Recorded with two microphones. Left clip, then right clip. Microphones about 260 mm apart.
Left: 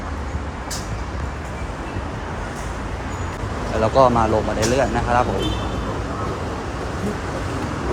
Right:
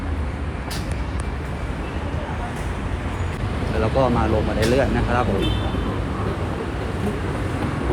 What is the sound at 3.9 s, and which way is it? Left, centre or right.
Speech, centre.